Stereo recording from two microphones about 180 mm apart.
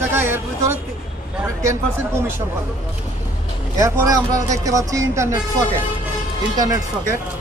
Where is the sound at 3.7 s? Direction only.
20° right (ahead or behind).